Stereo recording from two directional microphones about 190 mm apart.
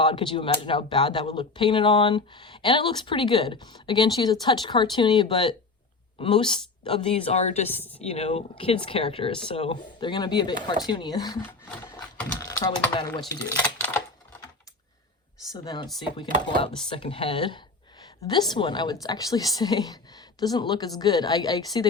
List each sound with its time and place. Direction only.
0.0 s speech: 25° left (ahead or behind)
7.7 s a woman's voice: 10° left (ahead or behind)
8.1 s speech: 35° left (ahead or behind)
12.4 s typing: 20° left (ahead or behind)
15.5 s a woman's voice: 25° left (ahead or behind)